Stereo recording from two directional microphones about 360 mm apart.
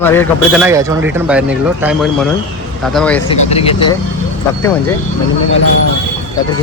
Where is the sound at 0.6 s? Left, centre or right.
Centre.